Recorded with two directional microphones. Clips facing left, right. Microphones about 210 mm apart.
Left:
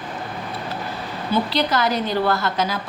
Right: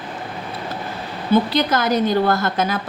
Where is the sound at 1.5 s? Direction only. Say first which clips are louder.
Right 2 dB; 50° right (ahead or behind).